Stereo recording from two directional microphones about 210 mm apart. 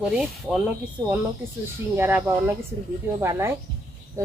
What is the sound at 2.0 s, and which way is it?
A woman's voice, 10° right (ahead or behind).